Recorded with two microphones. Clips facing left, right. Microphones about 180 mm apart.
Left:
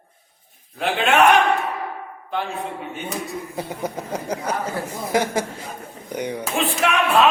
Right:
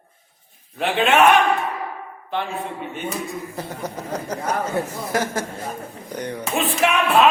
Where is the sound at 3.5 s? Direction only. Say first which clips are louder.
Left 2 dB; 10° left (ahead or behind).